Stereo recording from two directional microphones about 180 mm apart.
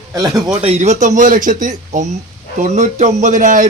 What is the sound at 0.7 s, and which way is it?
A man's voice, 40° right (ahead or behind).